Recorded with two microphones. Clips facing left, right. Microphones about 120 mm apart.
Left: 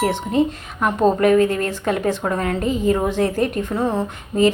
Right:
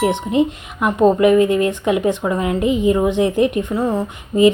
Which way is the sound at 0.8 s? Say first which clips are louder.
Right 3 dB; 10° right (ahead or behind).